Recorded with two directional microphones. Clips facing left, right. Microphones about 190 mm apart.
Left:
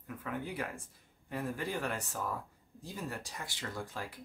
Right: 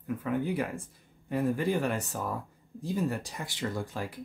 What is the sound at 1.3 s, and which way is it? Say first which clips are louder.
Speech: right 9 dB; 20° right (ahead or behind).